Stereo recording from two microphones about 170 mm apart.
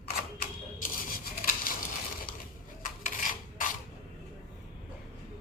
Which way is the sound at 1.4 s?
55° left (ahead or behind).